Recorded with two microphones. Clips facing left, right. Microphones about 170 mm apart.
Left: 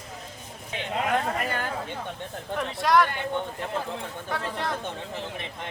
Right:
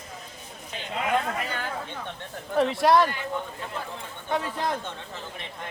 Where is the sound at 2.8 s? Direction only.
30° right (ahead or behind).